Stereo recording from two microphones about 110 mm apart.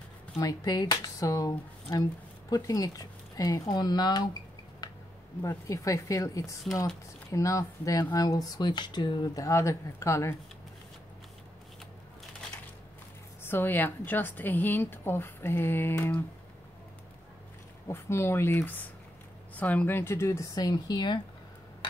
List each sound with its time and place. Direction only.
0.4 s a woman's voice: 35° left (ahead or behind)
13.4 s a woman's voice: 20° left (ahead or behind)
17.8 s a woman's voice: 20° left (ahead or behind); by 21.2 s 40° left (ahead or behind)